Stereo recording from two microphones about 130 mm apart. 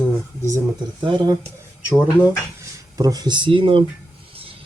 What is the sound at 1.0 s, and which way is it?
Speech, 35° right (ahead or behind).